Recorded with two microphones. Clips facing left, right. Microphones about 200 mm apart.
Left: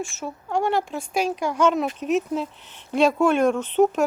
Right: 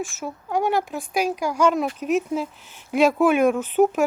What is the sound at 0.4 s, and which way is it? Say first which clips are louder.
Speech: right 1 dB; 5° right (ahead or behind).